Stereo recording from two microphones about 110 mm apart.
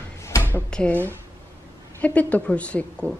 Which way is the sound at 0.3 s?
30° left (ahead or behind).